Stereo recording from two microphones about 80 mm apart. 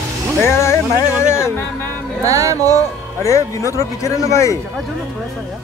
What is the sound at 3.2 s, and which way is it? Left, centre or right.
Speech, left.